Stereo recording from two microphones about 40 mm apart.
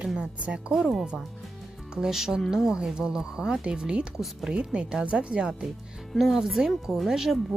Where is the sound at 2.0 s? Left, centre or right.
Centre.